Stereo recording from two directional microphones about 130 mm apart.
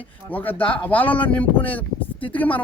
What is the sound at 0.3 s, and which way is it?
Speech, 15° left (ahead or behind).